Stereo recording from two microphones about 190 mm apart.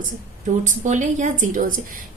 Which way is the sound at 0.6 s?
40° right (ahead or behind).